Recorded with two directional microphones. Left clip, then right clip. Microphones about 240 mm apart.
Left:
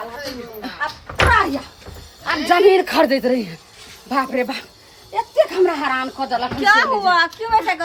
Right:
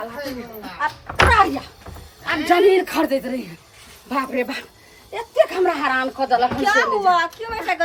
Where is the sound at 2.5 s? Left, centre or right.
Left.